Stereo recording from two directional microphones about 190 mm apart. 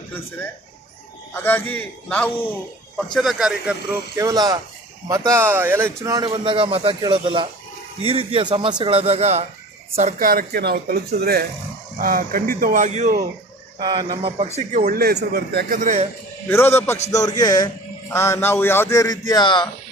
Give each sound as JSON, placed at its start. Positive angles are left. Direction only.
{"t": 0.1, "sound": "a man's voice", "side_deg": 10}
{"t": 4.1, "sound": "speech", "side_deg": -15}
{"t": 13.7, "sound": "speech", "side_deg": -25}
{"t": 14.8, "sound": "speech", "side_deg": -50}
{"t": 16.5, "sound": "a man's voice", "side_deg": 10}